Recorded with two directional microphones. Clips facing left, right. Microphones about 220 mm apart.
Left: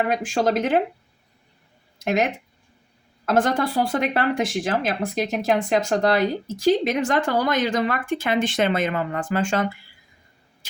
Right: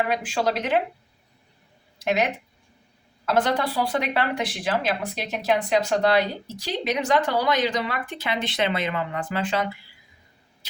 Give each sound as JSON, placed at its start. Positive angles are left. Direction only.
{"t": 0.1, "sound": "speech", "side_deg": 45}
{"t": 2.0, "sound": "speech", "side_deg": 45}